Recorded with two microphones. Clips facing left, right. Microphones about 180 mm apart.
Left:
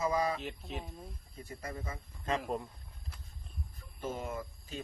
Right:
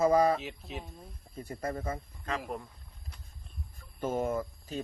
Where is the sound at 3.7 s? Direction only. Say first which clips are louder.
Right 7 dB; 50° right (ahead or behind).